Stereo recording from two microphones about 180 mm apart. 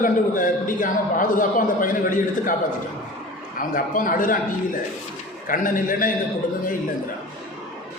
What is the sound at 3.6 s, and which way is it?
Speech, 50° left (ahead or behind).